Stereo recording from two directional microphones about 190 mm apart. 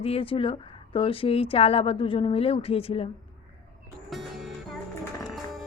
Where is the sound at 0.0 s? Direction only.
30° left (ahead or behind).